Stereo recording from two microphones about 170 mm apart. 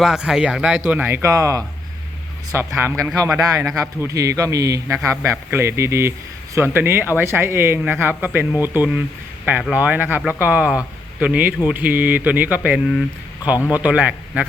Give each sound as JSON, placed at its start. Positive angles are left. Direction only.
{"t": 0.0, "sound": "speech", "side_deg": -5}